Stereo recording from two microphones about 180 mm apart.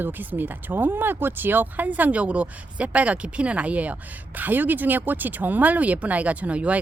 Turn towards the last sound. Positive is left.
turn(degrees=-5)  # may be behind; listen again after turning